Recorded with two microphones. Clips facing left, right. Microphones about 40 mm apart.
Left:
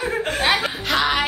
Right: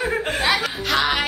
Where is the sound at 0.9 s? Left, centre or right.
Centre.